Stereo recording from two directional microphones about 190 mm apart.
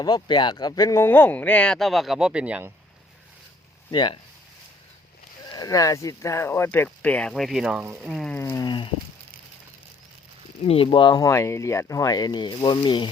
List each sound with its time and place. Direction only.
0.0 s speech: 20° left (ahead or behind); by 2.7 s 10° right (ahead or behind)
3.9 s speech: 25° left (ahead or behind)
5.5 s speech: 20° left (ahead or behind); by 8.1 s 10° right (ahead or behind)
8.1 s ratchet: centre (ahead or behind)
8.4 s a sound: 15° left (ahead or behind)
10.7 s speech: 30° left (ahead or behind)